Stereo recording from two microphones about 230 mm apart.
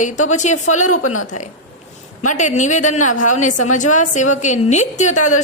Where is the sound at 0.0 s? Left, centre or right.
Left.